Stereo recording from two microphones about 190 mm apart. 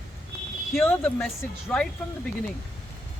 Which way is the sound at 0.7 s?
10° left (ahead or behind).